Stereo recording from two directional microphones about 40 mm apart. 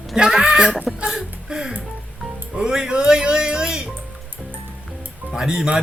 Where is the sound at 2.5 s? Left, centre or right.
Centre.